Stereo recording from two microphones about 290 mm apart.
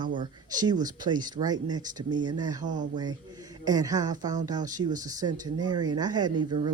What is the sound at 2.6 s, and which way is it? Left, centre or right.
Speech, right.